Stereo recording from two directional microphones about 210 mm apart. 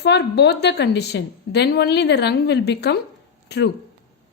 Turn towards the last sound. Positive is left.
turn(degrees=55)  # may be behind; listen again after turning